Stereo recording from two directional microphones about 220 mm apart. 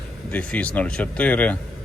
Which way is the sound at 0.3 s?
5° left (ahead or behind).